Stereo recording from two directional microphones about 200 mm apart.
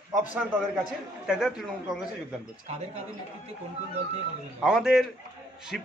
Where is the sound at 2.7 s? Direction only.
35° right (ahead or behind).